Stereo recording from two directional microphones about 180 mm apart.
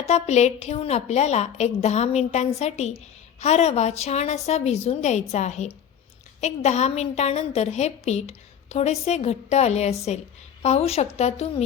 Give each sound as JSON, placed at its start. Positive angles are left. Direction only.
{"t": 0.0, "sound": "a woman's voice", "side_deg": 40}